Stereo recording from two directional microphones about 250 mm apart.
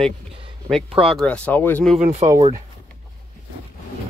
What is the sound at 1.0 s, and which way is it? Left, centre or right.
Speech, centre.